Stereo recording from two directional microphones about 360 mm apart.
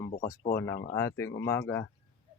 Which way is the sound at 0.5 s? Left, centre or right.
Centre.